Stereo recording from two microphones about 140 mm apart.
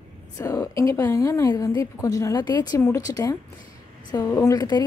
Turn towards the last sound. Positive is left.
turn(degrees=30)  # may be behind; listen again after turning